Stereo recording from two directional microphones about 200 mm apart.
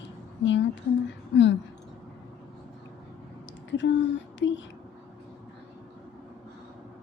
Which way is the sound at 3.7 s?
65° left (ahead or behind).